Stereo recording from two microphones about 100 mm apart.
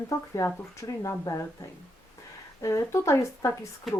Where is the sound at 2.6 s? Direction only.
30° left (ahead or behind).